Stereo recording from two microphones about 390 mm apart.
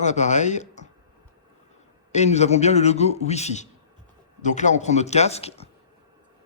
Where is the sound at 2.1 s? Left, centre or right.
Centre.